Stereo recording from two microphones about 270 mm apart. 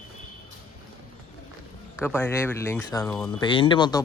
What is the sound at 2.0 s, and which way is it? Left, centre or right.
Speech, centre.